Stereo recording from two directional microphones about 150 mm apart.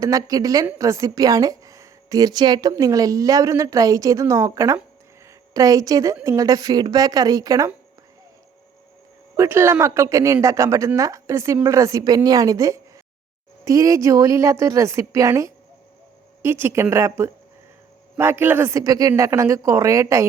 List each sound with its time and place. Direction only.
0.0 s a woman's voice: 25° right (ahead or behind)
9.3 s a woman's voice: 20° right (ahead or behind)